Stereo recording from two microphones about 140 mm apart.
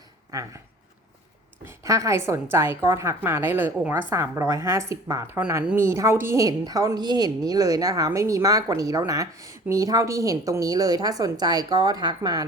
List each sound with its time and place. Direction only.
0.3 s a woman's voice: 25° right (ahead or behind)
1.6 s a woman's voice: 20° right (ahead or behind)